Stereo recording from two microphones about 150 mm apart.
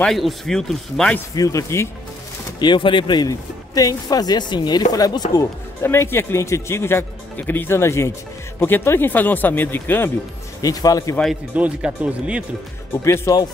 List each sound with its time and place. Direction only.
0.0 s speech: centre (ahead or behind)
1.3 s speech: 20° left (ahead or behind)
2.6 s speech: 30° left (ahead or behind)
5.8 s speech: 15° left (ahead or behind)
10.6 s speech: 25° left (ahead or behind)
11.5 s speech: 10° right (ahead or behind)
13.0 s speech: 20° left (ahead or behind)